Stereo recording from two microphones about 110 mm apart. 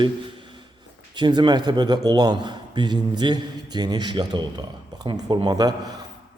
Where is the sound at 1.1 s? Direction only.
45° right (ahead or behind).